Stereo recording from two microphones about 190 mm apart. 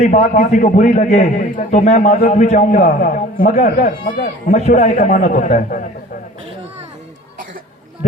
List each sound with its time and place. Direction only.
0.0 s a man's voice: 35° left (ahead or behind)